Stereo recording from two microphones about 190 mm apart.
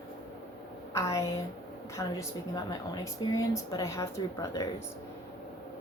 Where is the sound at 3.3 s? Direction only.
15° left (ahead or behind).